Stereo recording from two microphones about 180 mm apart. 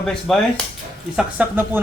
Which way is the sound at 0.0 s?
5° left (ahead or behind).